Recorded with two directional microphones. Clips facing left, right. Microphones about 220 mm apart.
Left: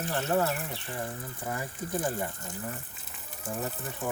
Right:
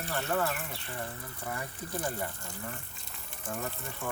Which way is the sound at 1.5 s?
15° left (ahead or behind).